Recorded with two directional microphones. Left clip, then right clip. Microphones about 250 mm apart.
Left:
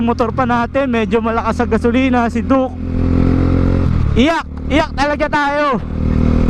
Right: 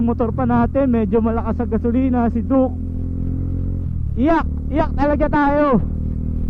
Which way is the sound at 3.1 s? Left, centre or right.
Centre.